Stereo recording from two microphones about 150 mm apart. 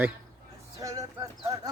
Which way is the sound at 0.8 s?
20° right (ahead or behind).